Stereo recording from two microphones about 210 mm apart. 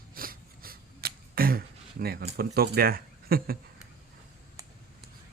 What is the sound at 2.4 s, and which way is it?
Speech, 45° right (ahead or behind).